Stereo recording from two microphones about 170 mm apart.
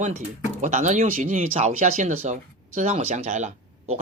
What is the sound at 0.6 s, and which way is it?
Speech, 45° right (ahead or behind).